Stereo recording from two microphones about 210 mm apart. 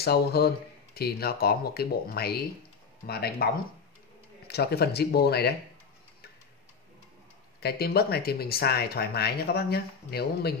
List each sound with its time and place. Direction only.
0.0 s speech: 50° left (ahead or behind)
4.5 s speech: 50° left (ahead or behind)
7.6 s speech: 50° left (ahead or behind)